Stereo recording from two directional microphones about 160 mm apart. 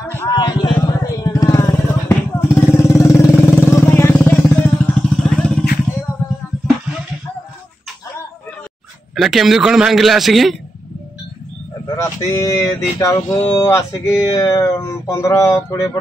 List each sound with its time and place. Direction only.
0.1 s vehicle: 20° left (ahead or behind); by 5.7 s 5° left (ahead or behind)
9.1 s a man's voice: centre (ahead or behind)
12.0 s speech: 20° left (ahead or behind)